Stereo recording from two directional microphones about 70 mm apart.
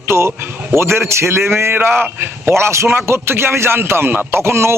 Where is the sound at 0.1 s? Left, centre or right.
Right.